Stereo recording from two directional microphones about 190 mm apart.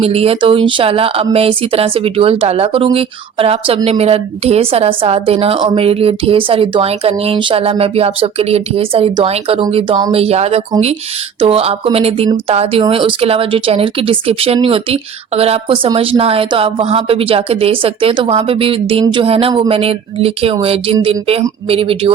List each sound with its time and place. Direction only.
0.0 s speech: 30° right (ahead or behind)